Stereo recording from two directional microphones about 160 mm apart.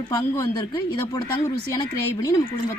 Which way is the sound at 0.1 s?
25° left (ahead or behind).